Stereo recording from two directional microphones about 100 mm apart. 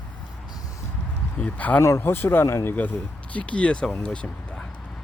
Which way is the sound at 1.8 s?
25° left (ahead or behind).